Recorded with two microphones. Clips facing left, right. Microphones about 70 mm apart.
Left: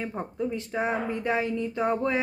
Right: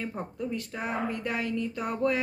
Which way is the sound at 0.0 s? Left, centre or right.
Left.